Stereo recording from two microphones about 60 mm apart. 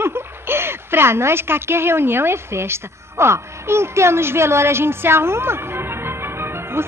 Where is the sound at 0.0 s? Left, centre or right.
Right.